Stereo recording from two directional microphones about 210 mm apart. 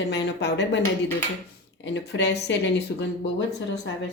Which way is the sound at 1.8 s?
55° left (ahead or behind).